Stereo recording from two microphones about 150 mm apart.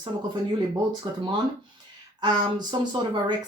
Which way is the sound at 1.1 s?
30° right (ahead or behind).